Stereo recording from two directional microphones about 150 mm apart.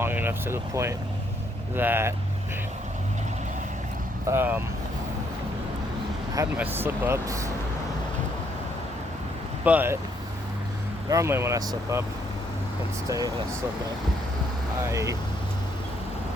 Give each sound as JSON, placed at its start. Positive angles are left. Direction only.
{"t": 0.0, "sound": "speech", "side_deg": -15}
{"t": 4.3, "sound": "speech", "side_deg": -15}
{"t": 6.6, "sound": "speech", "side_deg": -15}
{"t": 9.6, "sound": "speech", "side_deg": -10}
{"t": 11.1, "sound": "speech", "side_deg": -20}
{"t": 13.1, "sound": "speech", "side_deg": -20}
{"t": 14.8, "sound": "speech", "side_deg": -20}